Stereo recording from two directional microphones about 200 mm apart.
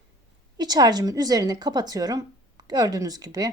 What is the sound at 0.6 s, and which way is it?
A woman's voice, 20° right (ahead or behind).